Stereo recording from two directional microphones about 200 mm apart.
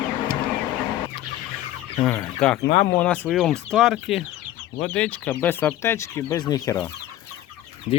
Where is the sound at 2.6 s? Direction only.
45° left (ahead or behind).